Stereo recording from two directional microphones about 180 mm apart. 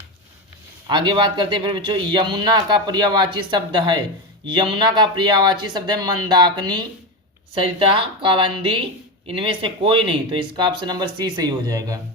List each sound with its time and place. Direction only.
0.9 s speech: 25° right (ahead or behind)